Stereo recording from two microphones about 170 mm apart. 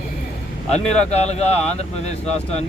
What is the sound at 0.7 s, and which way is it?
A man's voice, 40° left (ahead or behind).